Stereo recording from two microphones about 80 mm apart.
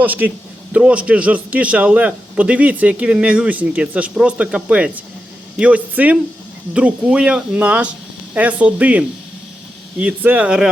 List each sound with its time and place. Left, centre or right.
0.0 s a man's voice: right